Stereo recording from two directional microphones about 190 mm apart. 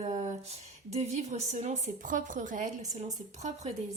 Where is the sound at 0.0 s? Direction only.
35° right (ahead or behind).